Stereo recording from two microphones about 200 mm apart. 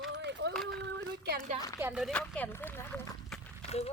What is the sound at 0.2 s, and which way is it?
Run, 60° right (ahead or behind).